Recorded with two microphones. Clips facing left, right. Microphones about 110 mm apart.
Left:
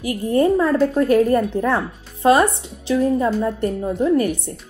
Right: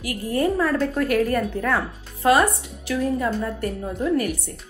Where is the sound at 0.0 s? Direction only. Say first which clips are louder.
Left 5 dB; 25° left (ahead or behind).